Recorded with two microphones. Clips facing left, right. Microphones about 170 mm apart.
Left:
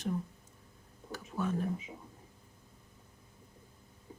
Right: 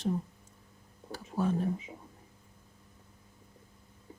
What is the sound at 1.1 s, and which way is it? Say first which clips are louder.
Speech: right 4 dB; 30° right (ahead or behind).